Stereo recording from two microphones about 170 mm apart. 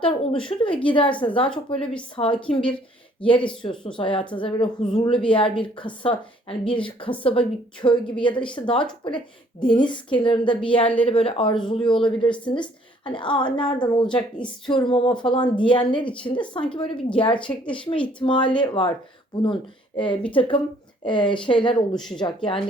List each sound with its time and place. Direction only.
0.0 s a woman's voice: 30° left (ahead or behind)
20.3 s a woman's voice: 30° left (ahead or behind)
21.9 s speech: centre (ahead or behind)
22.2 s a woman's voice: 30° left (ahead or behind)